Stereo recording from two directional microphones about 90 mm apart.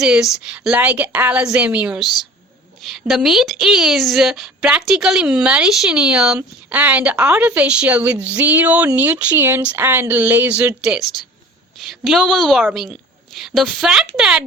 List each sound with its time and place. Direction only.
0.0 s a woman's voice: 5° right (ahead or behind)
2.8 s a woman's voice: 5° right (ahead or behind); by 10.7 s 20° right (ahead or behind)
11.1 s a woman's voice: 5° right (ahead or behind)